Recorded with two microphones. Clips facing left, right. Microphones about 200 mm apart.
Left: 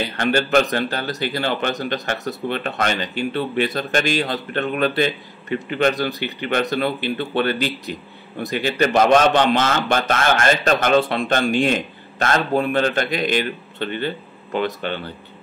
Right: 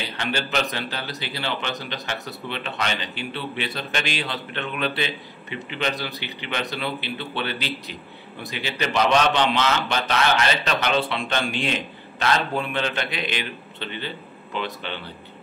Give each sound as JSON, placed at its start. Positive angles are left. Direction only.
{"t": 0.2, "sound": "a man's voice", "side_deg": 50}